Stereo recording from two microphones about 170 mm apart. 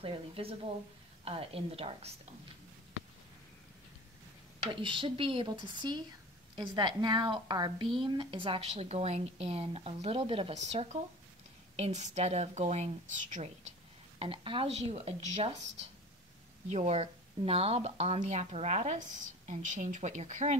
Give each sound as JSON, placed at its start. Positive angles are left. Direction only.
{"t": 0.0, "sound": "speech", "side_deg": -30}
{"t": 4.8, "sound": "a woman's voice", "side_deg": -30}
{"t": 14.2, "sound": "speech", "side_deg": -30}
{"t": 16.7, "sound": "speech", "side_deg": -40}